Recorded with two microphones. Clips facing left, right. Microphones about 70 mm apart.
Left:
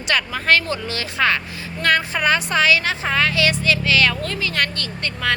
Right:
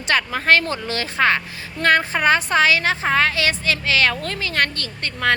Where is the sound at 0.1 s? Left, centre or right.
Right.